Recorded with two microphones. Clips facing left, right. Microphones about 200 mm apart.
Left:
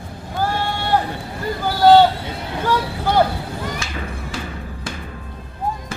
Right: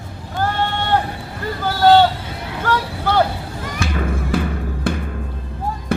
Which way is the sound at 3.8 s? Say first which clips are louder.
Right 7 dB; 55° right (ahead or behind).